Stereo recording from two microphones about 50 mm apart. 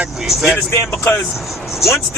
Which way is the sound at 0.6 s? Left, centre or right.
Left.